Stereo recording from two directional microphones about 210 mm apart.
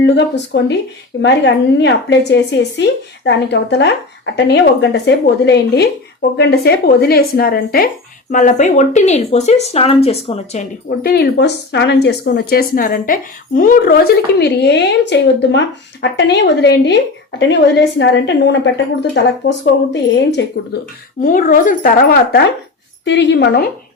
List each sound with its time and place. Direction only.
0.5 s speech: 55° left (ahead or behind)
21.2 s speech: 40° left (ahead or behind)